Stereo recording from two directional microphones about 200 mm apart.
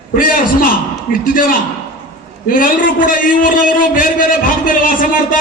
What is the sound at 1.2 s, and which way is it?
Speech, 45° left (ahead or behind).